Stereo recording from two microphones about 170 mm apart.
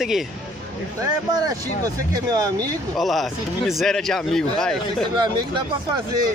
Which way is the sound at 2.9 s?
Centre (ahead or behind).